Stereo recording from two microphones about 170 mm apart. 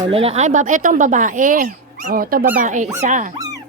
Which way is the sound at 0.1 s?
35° right (ahead or behind).